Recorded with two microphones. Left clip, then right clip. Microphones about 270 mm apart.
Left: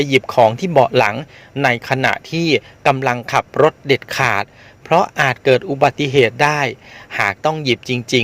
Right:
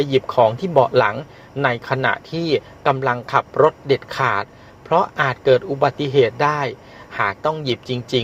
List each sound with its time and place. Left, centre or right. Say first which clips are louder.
0.0 s speech: left 3 dB; left